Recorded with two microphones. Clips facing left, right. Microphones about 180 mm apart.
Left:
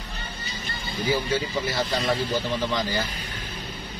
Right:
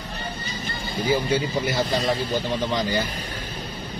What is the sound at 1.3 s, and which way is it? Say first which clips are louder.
Speech: right 3 dB; 25° right (ahead or behind).